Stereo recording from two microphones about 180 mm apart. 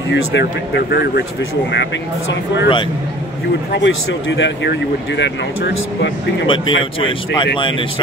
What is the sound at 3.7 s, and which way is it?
Speech, 80° left.